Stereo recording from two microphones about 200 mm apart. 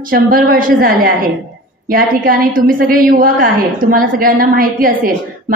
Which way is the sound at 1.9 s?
45° right (ahead or behind).